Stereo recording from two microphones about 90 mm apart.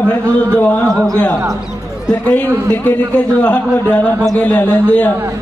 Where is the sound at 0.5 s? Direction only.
15° left (ahead or behind).